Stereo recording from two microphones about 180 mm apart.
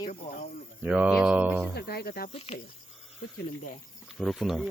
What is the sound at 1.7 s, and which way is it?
Cricket, 60° left (ahead or behind).